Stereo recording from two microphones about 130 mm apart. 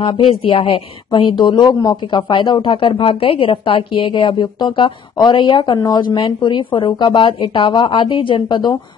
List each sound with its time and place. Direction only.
0.0 s a woman's voice: 40° left (ahead or behind)